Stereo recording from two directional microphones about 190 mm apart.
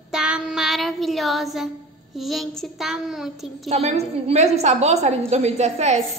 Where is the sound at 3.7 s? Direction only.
35° right (ahead or behind).